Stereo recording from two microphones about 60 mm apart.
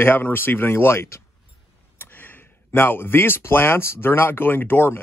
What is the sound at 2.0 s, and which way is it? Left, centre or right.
Speech, left.